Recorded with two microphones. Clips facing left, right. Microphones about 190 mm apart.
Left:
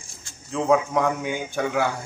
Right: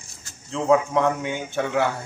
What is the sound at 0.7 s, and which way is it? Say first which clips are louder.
Speech: right 2 dB; 5° left (ahead or behind).